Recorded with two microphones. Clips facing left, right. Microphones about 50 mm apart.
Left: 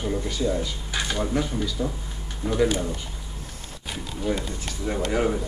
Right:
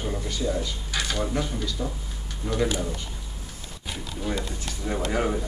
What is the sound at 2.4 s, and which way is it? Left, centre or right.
Speech, left.